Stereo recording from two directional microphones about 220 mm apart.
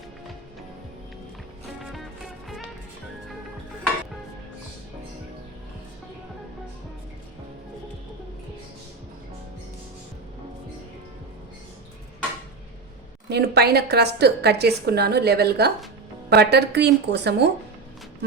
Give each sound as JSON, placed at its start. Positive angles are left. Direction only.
{"t": 1.8, "sound": "music", "side_deg": 0}
{"t": 13.3, "sound": "a woman's voice", "side_deg": -45}